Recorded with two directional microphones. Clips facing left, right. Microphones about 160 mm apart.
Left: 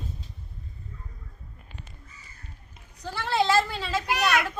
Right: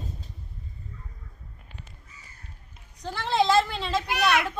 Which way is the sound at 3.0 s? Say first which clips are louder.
Right 1 dB; 5° left (ahead or behind).